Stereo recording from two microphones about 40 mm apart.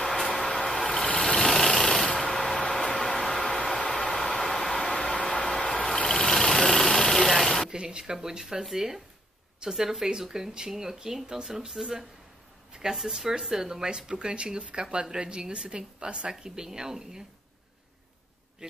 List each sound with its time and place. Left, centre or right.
0.2 s a sound: centre
0.7 s vehicle: centre
2.2 s a sound: centre
6.0 s vehicle: centre
7.7 s a woman's voice: centre
16.3 s speech: centre
18.6 s a woman's voice: right